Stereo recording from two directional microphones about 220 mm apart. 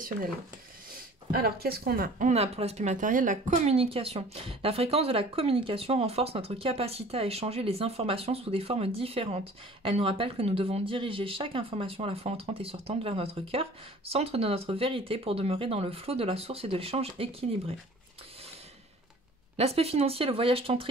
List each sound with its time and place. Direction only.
1.3 s speech: 45° right (ahead or behind); by 17.7 s 25° right (ahead or behind)
19.5 s speech: 25° right (ahead or behind)